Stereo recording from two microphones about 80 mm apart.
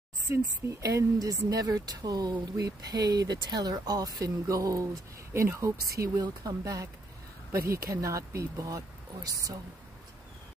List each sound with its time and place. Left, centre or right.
0.3 s speech: right
5.3 s speech: right